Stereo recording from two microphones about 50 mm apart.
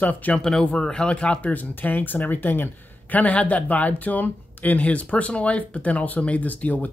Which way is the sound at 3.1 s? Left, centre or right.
Left.